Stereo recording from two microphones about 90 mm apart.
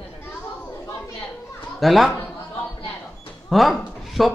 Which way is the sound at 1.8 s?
Centre (ahead or behind).